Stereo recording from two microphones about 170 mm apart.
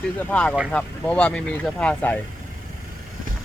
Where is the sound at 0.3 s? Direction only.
5° left (ahead or behind).